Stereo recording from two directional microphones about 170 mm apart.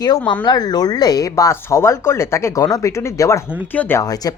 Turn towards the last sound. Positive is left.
turn(degrees=20)  # may be behind; listen again after turning